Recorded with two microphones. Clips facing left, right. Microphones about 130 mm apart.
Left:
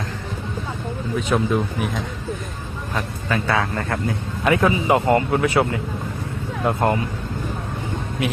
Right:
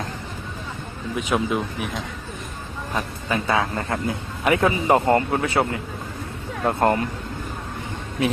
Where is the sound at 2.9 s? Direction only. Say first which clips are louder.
Left 1 dB; 15° right (ahead or behind).